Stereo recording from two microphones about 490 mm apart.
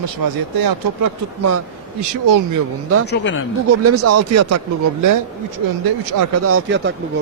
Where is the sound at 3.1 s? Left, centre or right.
Left.